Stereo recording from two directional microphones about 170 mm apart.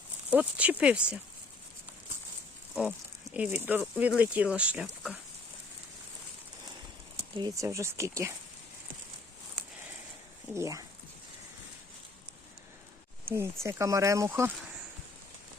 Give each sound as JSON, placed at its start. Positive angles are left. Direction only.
{"t": 0.3, "sound": "speech", "side_deg": -10}
{"t": 3.3, "sound": "speech", "side_deg": -10}
{"t": 7.3, "sound": "speech", "side_deg": -20}
{"t": 10.5, "sound": "speech", "side_deg": -20}
{"t": 13.2, "sound": "speech", "side_deg": -15}